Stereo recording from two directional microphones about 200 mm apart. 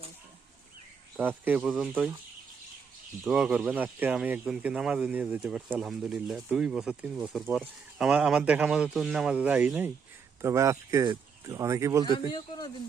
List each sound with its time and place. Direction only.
1.1 s speech: 10° right (ahead or behind)
3.2 s speech: 5° right (ahead or behind)
12.0 s speech: 20° left (ahead or behind)